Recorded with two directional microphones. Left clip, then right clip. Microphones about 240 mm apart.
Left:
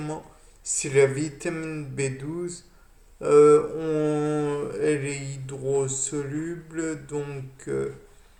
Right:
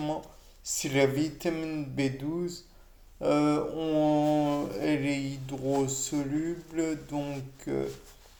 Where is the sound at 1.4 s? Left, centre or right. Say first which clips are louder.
Left 1 dB; right.